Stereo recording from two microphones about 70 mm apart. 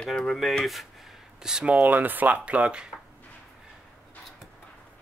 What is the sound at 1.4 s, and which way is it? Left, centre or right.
Speech, centre.